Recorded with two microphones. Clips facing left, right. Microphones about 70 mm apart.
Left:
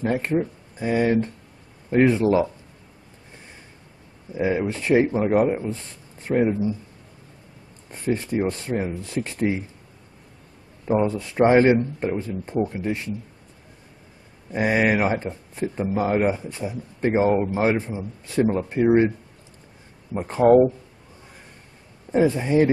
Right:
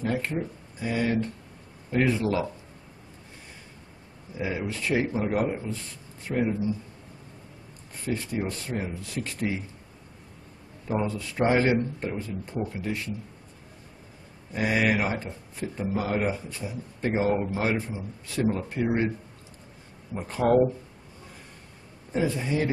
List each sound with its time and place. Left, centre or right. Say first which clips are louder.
0.0 s speech: left 6 dB; left
4.4 s speech: left 7 dB; left
7.9 s speech: left 6 dB; left
10.9 s speech: left 7 dB; left
14.5 s speech: left 4 dB; left
20.2 s speech: left 7 dB; left
22.1 s speech: left 8 dB; left